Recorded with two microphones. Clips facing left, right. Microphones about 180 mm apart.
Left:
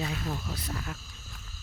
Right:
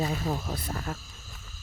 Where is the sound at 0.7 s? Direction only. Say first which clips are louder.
Right 3 dB; 40° right (ahead or behind).